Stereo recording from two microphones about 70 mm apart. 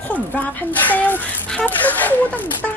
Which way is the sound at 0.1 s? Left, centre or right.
Left.